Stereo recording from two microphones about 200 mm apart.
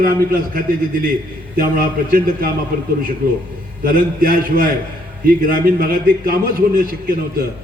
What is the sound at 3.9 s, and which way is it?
A man's voice, 45° right (ahead or behind).